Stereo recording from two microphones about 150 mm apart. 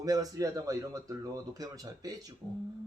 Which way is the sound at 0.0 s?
25° right (ahead or behind).